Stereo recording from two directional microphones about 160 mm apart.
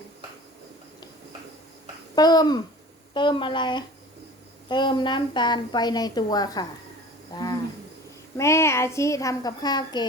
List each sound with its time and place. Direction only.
2.1 s a woman's voice: 25° left (ahead or behind)
8.4 s a woman's voice: 15° left (ahead or behind)